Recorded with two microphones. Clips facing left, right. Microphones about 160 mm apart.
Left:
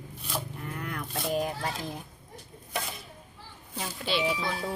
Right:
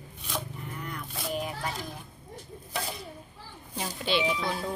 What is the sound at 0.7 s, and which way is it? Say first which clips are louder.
Single-lens reflex camera: left 2 dB; 60° left (ahead or behind).